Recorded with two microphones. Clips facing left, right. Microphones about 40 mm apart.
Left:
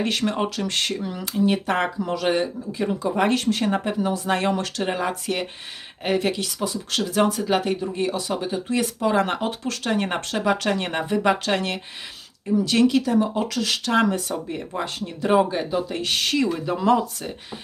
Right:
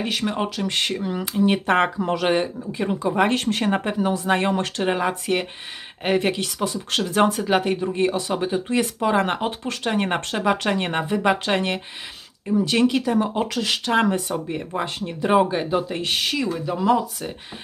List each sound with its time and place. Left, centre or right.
0.0 s speech: centre
0.8 s speech: centre
2.0 s speech: right
2.2 s speech: right
3.2 s speech: right
4.3 s speech: centre
6.3 s speech: right
7.3 s speech: centre
7.9 s speech: right
8.3 s speech: centre
11.4 s speech: right; by 17.3 s centre